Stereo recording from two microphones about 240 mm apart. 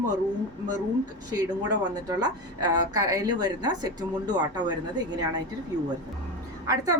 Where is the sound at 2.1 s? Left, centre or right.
Centre.